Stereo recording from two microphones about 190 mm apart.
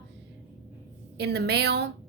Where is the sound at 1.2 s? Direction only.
60° right (ahead or behind).